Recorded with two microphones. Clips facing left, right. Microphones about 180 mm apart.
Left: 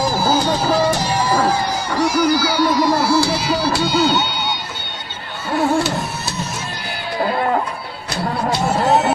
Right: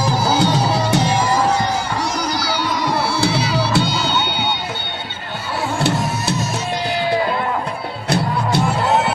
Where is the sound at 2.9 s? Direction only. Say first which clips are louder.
Left 3 dB; 65° right (ahead or behind).